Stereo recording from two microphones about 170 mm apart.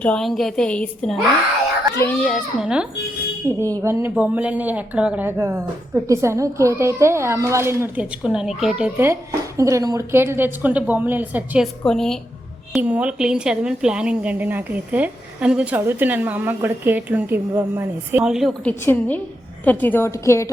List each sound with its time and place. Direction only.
0.0 s a woman's voice: 5° left (ahead or behind)
2.2 s a woman's voice: centre (ahead or behind)
3.6 s speech: 20° right (ahead or behind)
8.2 s a woman's voice: 5° right (ahead or behind)
11.8 s a woman's voice: 5° left (ahead or behind)
12.7 s speech: 10° right (ahead or behind)
18.9 s a woman's voice: 10° left (ahead or behind)